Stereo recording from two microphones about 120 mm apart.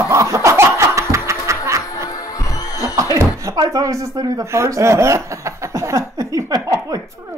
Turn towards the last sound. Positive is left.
turn(degrees=-30)  # may be behind; listen again after turning